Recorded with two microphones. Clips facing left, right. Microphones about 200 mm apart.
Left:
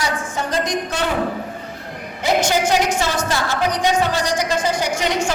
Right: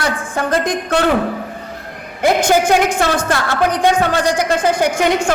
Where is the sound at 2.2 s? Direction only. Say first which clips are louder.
Right 5 dB; 55° right (ahead or behind).